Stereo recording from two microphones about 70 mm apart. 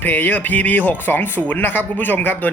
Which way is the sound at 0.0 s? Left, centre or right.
Left.